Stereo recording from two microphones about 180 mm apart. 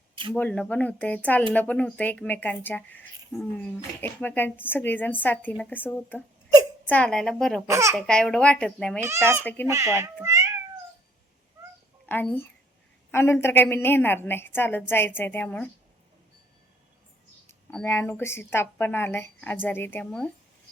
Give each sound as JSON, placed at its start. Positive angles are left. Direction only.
{"t": 0.3, "sound": "a woman's voice", "side_deg": 5}
{"t": 7.7, "sound": "speech", "side_deg": -15}
{"t": 7.9, "sound": "a child's voice", "side_deg": 5}
{"t": 9.0, "sound": "speech", "side_deg": -15}
{"t": 9.4, "sound": "a woman's voice", "side_deg": 10}
{"t": 9.6, "sound": "speech", "side_deg": -15}
{"t": 12.0, "sound": "a child's voice", "side_deg": 10}
{"t": 17.7, "sound": "a woman's voice", "side_deg": 10}